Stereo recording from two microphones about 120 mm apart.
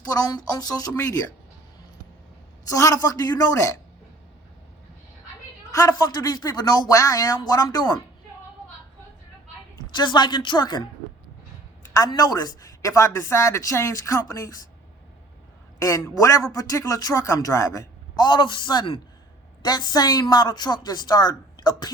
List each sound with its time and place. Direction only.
0.0 s speech: 30° left (ahead or behind)
2.6 s speech: 25° left (ahead or behind)
6.1 s speech: 35° left (ahead or behind)
9.9 s speech: 40° left (ahead or behind)
11.9 s speech: 30° left (ahead or behind)
15.8 s speech: 30° left (ahead or behind)